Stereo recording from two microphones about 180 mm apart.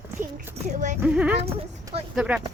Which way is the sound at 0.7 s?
45° right (ahead or behind).